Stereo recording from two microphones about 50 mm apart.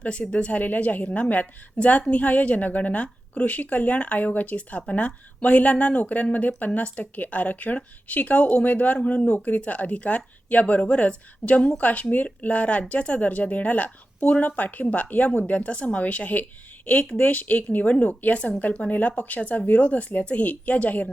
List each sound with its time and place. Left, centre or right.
0.0 s a woman's voice: left